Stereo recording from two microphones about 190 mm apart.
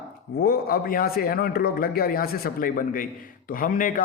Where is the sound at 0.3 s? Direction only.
50° left (ahead or behind).